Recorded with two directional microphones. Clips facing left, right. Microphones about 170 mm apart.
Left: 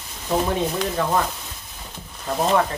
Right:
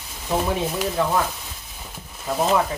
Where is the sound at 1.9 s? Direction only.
5° right (ahead or behind).